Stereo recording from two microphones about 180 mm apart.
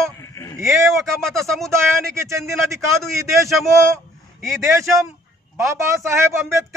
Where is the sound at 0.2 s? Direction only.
15° left (ahead or behind).